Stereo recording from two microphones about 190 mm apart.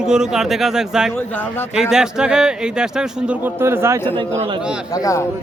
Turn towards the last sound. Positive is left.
turn(degrees=15)  # may be behind; listen again after turning